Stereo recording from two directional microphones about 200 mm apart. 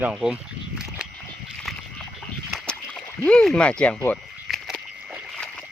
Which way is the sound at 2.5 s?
Centre (ahead or behind).